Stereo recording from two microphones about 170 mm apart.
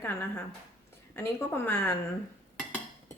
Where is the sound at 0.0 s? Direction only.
15° left (ahead or behind).